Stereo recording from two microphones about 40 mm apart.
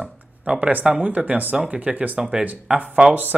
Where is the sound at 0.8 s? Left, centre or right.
Right.